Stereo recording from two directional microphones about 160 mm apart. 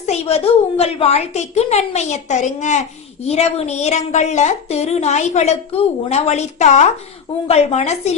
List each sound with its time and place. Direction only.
0.0 s a woman's voice: 40° left (ahead or behind)